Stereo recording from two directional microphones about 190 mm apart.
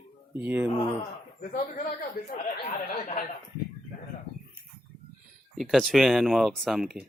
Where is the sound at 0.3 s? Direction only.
10° right (ahead or behind).